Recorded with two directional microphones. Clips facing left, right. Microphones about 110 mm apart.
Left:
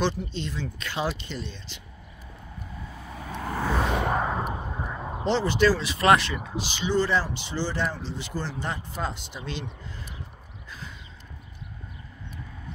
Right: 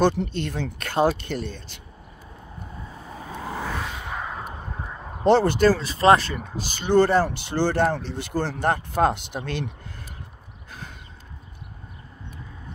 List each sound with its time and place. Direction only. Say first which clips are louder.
0.3 s speech: right 4 dB; 55° right (ahead or behind)
2.9 s vehicle: even; 30° right (ahead or behind)
3.3 s vehicle: left 1 dB; 5° right (ahead or behind)
3.9 s a sound: left 8 dB; 60° left (ahead or behind)
4.2 s a sound: left 5 dB; 25° left (ahead or behind)
4.5 s vehicle: left 3 dB; 10° left (ahead or behind)
5.2 s speech: right 5 dB; 50° right (ahead or behind)
6.7 s speech: right 6 dB; 55° right (ahead or behind)
10.7 s a sound: right 2 dB; 55° right (ahead or behind)